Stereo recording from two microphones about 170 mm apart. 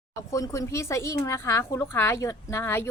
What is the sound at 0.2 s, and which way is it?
A woman's voice, 20° left (ahead or behind).